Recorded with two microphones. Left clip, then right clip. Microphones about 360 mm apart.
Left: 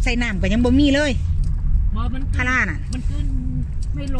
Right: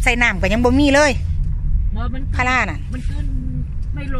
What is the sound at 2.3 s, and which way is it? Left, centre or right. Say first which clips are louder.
Speech: right 2 dB; centre.